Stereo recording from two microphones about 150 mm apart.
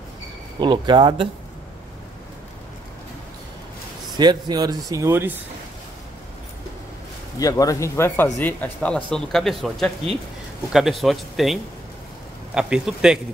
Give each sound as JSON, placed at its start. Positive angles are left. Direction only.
{"t": 0.6, "sound": "speech", "side_deg": -30}
{"t": 4.2, "sound": "speech", "side_deg": -30}
{"t": 7.3, "sound": "speech", "side_deg": 20}